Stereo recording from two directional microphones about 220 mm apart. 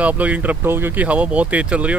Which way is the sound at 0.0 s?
5° right (ahead or behind).